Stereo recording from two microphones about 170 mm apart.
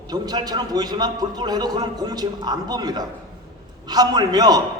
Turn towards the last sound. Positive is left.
turn(degrees=-25)  # may be behind; listen again after turning